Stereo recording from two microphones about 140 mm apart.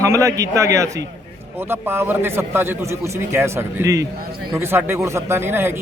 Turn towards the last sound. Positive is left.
turn(degrees=-15)  # may be behind; listen again after turning